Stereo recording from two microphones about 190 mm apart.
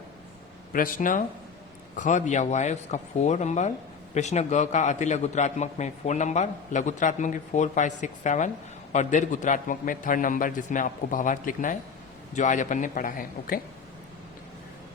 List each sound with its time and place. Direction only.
0.7 s a man's voice: 45° left (ahead or behind)